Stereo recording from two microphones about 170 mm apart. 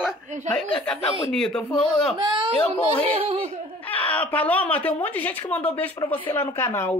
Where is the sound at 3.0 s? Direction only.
35° right (ahead or behind).